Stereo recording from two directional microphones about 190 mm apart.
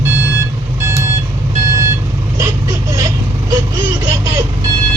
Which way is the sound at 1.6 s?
15° right (ahead or behind).